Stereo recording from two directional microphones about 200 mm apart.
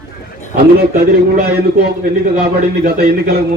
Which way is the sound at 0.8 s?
50° right (ahead or behind).